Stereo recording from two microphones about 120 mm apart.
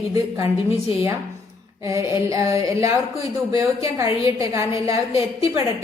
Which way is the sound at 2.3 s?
25° right (ahead or behind).